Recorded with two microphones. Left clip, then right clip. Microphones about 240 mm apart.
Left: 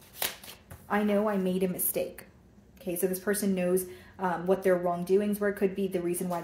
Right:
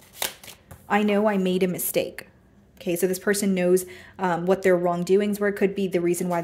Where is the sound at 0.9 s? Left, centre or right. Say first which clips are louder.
Right 6 dB; right.